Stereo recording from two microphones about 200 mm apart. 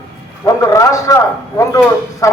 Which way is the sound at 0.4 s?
15° left (ahead or behind).